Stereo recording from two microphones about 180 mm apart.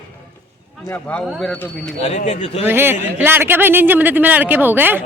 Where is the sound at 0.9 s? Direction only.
5° left (ahead or behind).